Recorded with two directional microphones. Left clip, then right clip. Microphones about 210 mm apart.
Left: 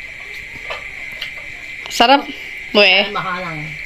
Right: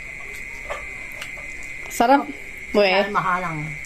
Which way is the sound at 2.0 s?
Centre (ahead or behind).